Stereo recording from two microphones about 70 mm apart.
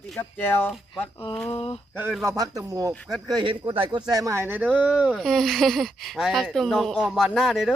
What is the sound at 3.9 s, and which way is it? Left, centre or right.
Speech, right.